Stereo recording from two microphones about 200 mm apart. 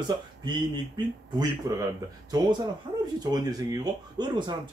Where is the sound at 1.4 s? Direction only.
20° right (ahead or behind).